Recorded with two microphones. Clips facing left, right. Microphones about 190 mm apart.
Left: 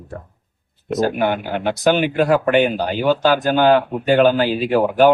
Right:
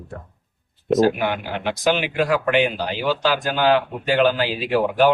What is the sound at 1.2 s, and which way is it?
Speech, 50° left (ahead or behind).